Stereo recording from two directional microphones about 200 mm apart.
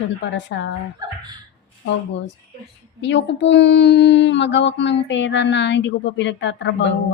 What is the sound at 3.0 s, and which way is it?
Speech, 65° left (ahead or behind).